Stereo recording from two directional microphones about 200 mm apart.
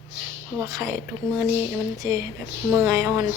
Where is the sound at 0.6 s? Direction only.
15° right (ahead or behind).